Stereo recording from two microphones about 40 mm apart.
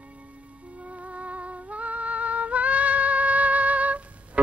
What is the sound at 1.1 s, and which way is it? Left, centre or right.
Music, right.